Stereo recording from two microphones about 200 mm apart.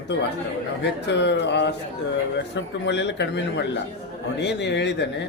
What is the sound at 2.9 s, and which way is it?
A man's voice, 60° left (ahead or behind).